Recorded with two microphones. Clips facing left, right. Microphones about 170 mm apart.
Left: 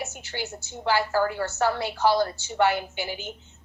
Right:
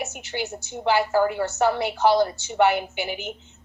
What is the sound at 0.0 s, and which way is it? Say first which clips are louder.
A woman's voice: right 4 dB; 20° right (ahead or behind).